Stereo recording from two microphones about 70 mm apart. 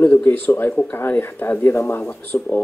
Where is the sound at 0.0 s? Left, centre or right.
Left.